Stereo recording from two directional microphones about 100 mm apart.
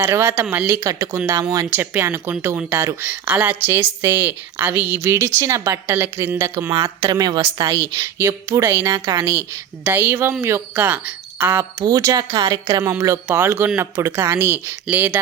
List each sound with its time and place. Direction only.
0.0 s a woman's voice: 25° right (ahead or behind)
1.8 s a woman's voice: 20° right (ahead or behind)
6.0 s a woman's voice: 25° right (ahead or behind); by 7.7 s 45° right (ahead or behind)
7.7 s a woman's voice: 30° right (ahead or behind)
9.8 s a woman's voice: 15° right (ahead or behind)
11.9 s a woman's voice: 35° right (ahead or behind); by 15.2 s 15° right (ahead or behind)